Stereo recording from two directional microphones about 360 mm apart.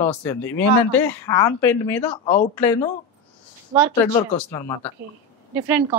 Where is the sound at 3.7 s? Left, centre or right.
Centre.